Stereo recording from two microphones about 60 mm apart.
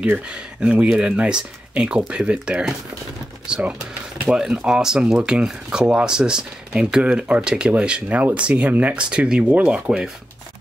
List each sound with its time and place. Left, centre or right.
0.3 s speech: centre